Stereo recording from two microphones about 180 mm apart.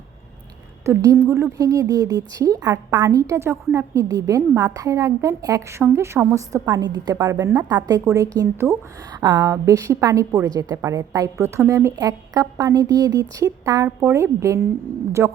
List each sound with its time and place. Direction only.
0.9 s a woman's voice: 15° right (ahead or behind)